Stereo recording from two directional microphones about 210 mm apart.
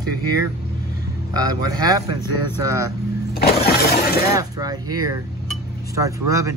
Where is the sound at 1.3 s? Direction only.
15° right (ahead or behind).